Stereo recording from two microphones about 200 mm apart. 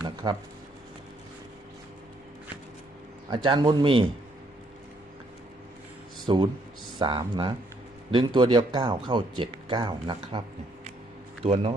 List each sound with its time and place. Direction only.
0.0 s a sound: 20° right (ahead or behind)
3.2 s speech: 25° right (ahead or behind)
6.2 s speech: 25° right (ahead or behind)
11.4 s speech: 30° right (ahead or behind)